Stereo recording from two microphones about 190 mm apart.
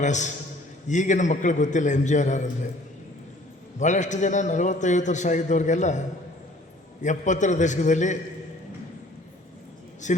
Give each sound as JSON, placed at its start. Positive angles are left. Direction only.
{"t": 0.0, "sound": "a man's voice", "side_deg": 40}
{"t": 3.8, "sound": "a man's voice", "side_deg": 40}
{"t": 7.0, "sound": "a man's voice", "side_deg": 40}
{"t": 10.0, "sound": "a man's voice", "side_deg": 40}